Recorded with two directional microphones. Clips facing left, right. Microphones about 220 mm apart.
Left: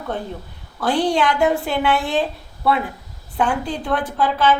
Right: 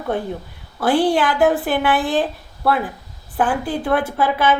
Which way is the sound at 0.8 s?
5° right (ahead or behind).